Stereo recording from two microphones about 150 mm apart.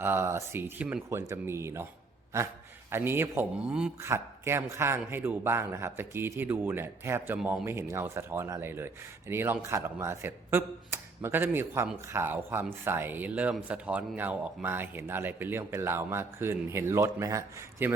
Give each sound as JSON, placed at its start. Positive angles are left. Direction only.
{"t": 0.0, "sound": "speech", "side_deg": -15}
{"t": 2.9, "sound": "speech", "side_deg": -15}
{"t": 4.0, "sound": "speech", "side_deg": -15}